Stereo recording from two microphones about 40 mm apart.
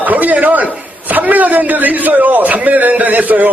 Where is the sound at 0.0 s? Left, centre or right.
Right.